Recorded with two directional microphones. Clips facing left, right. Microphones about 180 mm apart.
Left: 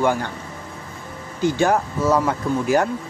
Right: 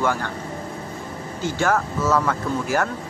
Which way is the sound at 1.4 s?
15° left (ahead or behind).